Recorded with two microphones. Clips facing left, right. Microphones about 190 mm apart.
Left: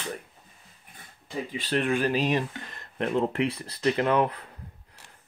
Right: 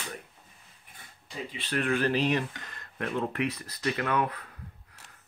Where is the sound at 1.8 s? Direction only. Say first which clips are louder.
Left 1 dB; 15° left (ahead or behind).